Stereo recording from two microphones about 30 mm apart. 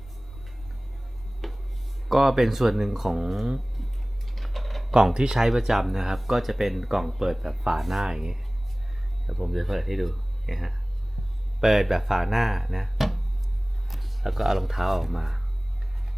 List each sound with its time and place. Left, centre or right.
1.4 s music: centre
2.0 s speech: centre
4.4 s typing: centre
4.9 s speech: right
5.5 s speech: centre
8.0 s speech: centre
9.2 s speech: centre